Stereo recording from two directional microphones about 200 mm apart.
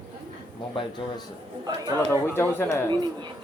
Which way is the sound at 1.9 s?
10° left (ahead or behind).